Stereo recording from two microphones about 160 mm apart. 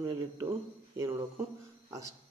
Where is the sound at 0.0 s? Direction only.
30° right (ahead or behind).